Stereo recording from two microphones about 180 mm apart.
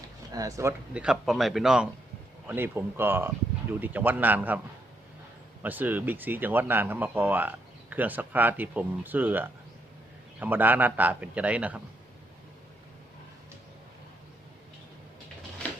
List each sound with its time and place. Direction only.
0.3 s speech: 20° right (ahead or behind)
0.9 s a man's voice: 5° right (ahead or behind)
5.6 s speech: 10° right (ahead or behind)